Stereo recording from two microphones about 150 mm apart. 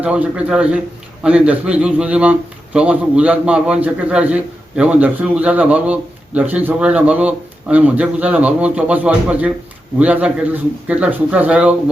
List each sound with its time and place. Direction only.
0.0 s a man's voice: 10° right (ahead or behind)